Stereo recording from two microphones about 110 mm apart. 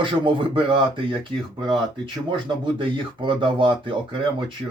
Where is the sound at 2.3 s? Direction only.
50° right (ahead or behind).